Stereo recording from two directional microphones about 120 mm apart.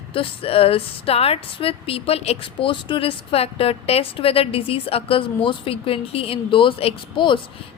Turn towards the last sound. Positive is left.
turn(degrees=45)  # may be behind; listen again after turning